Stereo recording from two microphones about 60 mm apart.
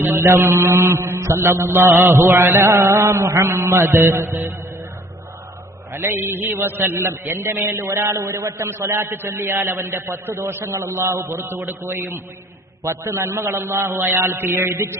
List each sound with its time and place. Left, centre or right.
0.0 s a man's voice: right
5.9 s a man's voice: right